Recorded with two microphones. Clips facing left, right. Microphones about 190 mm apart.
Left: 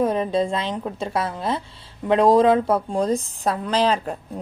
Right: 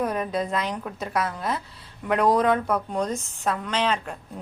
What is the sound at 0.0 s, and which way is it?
A woman's voice, 25° left (ahead or behind).